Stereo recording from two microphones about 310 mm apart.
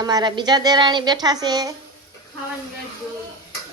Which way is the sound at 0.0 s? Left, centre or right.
Centre.